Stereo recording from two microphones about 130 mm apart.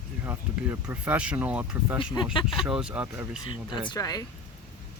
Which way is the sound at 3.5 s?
35° left (ahead or behind).